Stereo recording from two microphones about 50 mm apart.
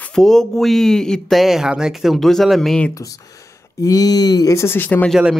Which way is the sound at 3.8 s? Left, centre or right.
Left.